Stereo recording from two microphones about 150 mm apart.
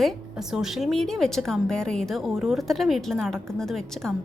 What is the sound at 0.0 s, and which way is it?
A woman's voice, 5° right (ahead or behind).